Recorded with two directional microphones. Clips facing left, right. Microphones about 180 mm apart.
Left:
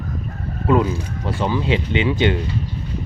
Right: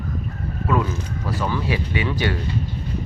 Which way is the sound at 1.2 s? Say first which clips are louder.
Left 3 dB; 25° left (ahead or behind).